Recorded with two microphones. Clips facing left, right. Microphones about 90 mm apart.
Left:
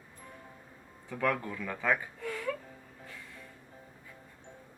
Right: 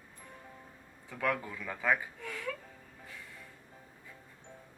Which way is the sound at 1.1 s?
5° right (ahead or behind).